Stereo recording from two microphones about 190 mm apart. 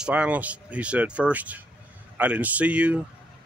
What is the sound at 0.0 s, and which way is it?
Speech, 5° right (ahead or behind).